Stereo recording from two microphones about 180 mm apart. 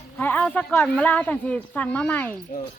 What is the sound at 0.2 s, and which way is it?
Speech, 10° left (ahead or behind).